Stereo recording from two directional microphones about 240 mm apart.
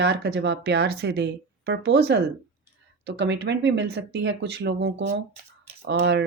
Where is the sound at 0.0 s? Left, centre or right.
Right.